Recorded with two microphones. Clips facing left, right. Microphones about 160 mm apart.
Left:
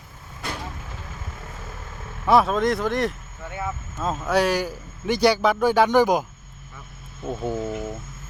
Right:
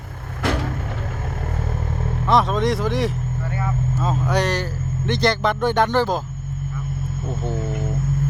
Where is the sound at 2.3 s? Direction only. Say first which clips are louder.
Even; 5° left (ahead or behind).